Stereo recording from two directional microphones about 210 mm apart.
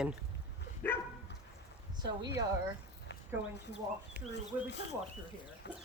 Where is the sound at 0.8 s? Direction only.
10° left (ahead or behind).